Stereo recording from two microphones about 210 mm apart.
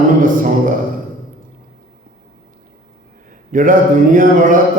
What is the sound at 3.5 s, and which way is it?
A man's voice, 40° right (ahead or behind).